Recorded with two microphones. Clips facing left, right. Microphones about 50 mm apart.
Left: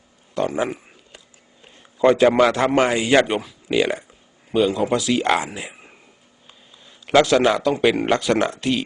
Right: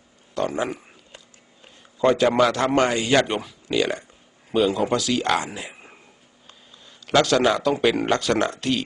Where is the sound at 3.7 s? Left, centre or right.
Centre.